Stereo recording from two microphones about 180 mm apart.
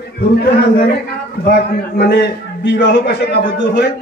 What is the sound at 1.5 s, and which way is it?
A man's voice, 65° left (ahead or behind).